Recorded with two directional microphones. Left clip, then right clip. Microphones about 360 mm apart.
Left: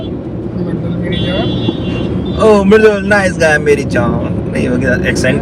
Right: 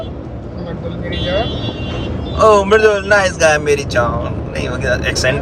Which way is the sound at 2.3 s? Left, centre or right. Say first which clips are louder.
Left 1 dB; right.